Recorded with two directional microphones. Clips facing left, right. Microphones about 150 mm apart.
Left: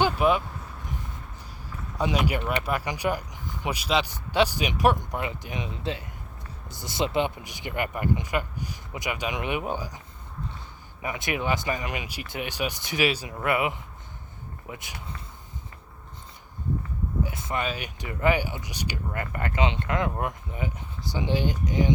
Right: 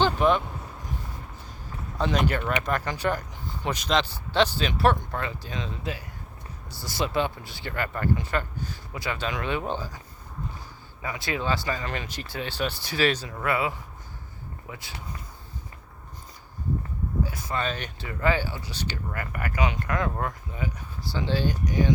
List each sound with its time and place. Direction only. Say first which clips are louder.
0.0 s vehicle: even; 10° left (ahead or behind)
2.0 s speech: even; 10° left (ahead or behind)
11.0 s speech: left 1 dB; 20° left (ahead or behind)
17.2 s speech: even; 20° left (ahead or behind)
17.7 s speech: even; 10° left (ahead or behind)
19.1 s speech: left 3 dB; 25° left (ahead or behind)